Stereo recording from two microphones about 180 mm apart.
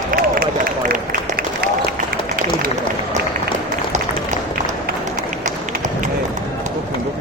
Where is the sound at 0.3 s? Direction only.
55° right (ahead or behind).